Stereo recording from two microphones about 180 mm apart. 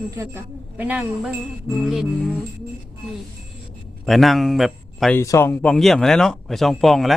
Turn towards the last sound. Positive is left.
turn(degrees=0)  # may be behind; listen again after turning